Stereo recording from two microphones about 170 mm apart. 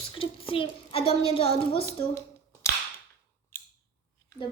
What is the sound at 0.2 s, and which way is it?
A woman's voice, 30° left (ahead or behind).